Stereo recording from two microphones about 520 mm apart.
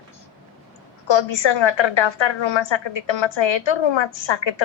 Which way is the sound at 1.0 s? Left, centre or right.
Left.